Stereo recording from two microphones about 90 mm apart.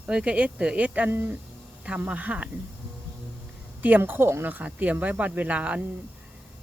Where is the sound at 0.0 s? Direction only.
10° right (ahead or behind).